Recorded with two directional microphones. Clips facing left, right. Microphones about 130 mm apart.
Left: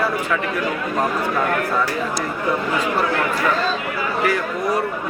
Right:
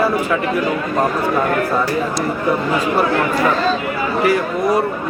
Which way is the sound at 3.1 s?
25° right (ahead or behind).